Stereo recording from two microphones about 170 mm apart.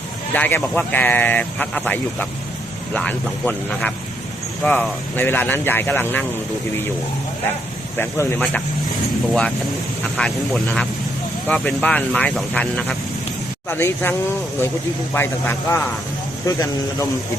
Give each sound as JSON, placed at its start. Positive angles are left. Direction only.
{"t": 0.3, "sound": "speech", "side_deg": 10}
{"t": 7.9, "sound": "speech", "side_deg": 15}
{"t": 10.2, "sound": "speech", "side_deg": 5}